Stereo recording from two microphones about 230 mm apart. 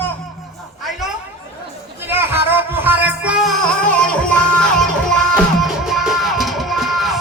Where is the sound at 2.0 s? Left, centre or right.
Centre.